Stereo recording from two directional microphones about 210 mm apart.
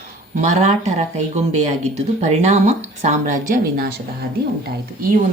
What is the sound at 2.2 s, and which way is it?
A woman's voice, 30° right (ahead or behind).